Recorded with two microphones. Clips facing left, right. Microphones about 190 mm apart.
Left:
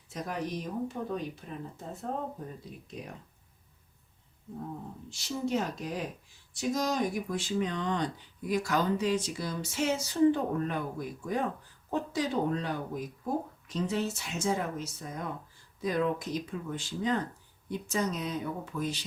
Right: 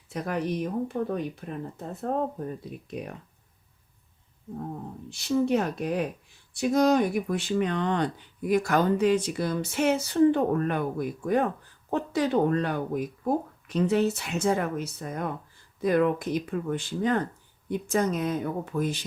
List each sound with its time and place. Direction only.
0.1 s speech: 65° right (ahead or behind)
5.0 s speech: 60° right (ahead or behind)